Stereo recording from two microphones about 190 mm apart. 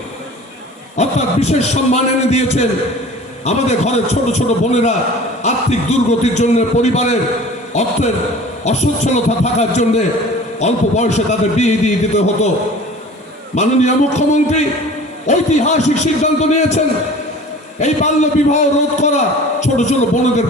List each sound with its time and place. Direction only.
0.9 s a man's voice: 35° left (ahead or behind)
13.6 s a man's voice: 35° left (ahead or behind)
17.7 s a man's voice: 40° left (ahead or behind)